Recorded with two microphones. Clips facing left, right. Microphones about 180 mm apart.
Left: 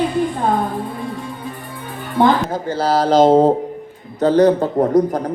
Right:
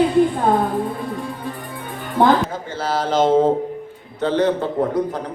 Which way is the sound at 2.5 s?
35° left (ahead or behind).